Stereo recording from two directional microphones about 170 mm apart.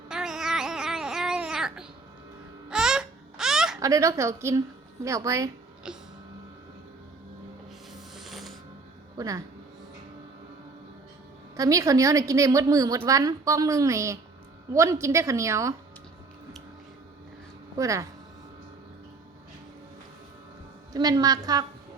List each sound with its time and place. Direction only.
0.1 s a sound: 5° right (ahead or behind)
2.6 s baby laughter: 5° right (ahead or behind)
3.8 s a woman's voice: 20° right (ahead or behind)
5.8 s printer: 5° right (ahead or behind)
8.1 s gears: centre (ahead or behind)
9.1 s speech: 20° right (ahead or behind)
11.5 s a woman's voice: 20° right (ahead or behind)
17.7 s a woman's voice: 20° right (ahead or behind)
20.9 s a woman's voice: 20° right (ahead or behind)